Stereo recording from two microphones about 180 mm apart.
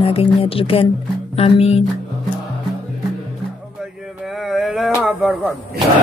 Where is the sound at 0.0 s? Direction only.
30° left (ahead or behind).